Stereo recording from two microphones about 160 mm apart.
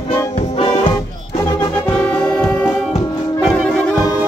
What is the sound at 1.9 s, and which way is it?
Brass instrument, 5° left (ahead or behind).